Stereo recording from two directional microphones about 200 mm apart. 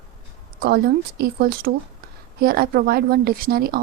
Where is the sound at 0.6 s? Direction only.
50° right (ahead or behind).